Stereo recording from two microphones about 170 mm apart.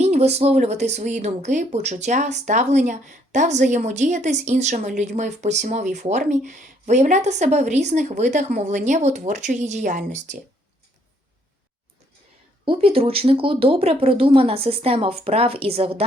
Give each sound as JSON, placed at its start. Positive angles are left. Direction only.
{"t": 0.0, "sound": "speech", "side_deg": -40}
{"t": 12.6, "sound": "speech", "side_deg": -30}